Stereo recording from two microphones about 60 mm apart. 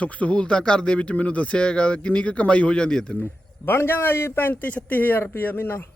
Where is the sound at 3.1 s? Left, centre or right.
Left.